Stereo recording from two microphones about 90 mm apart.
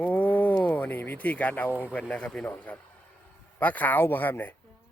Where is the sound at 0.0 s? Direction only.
15° left (ahead or behind).